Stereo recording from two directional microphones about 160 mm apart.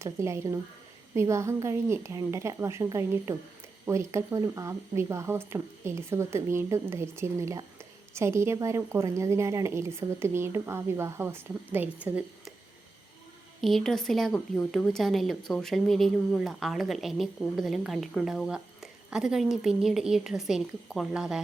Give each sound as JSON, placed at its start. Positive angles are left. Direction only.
{"t": 0.0, "sound": "speech", "side_deg": -15}
{"t": 13.6, "sound": "speech", "side_deg": 0}